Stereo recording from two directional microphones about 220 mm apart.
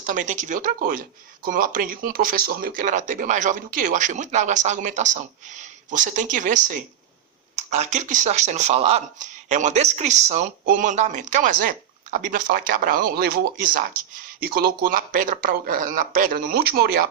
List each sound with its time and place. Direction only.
0.0 s speech: 35° right (ahead or behind)